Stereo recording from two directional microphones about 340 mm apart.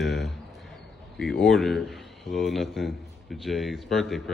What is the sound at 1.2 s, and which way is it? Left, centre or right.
Speech, centre.